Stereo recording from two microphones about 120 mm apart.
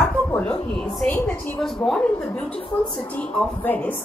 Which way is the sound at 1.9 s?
5° left (ahead or behind).